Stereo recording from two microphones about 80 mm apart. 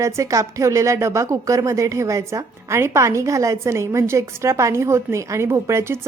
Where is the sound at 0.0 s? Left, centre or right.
Right.